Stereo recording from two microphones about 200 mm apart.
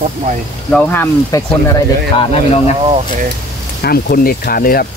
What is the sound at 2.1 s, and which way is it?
Speech, 30° left (ahead or behind).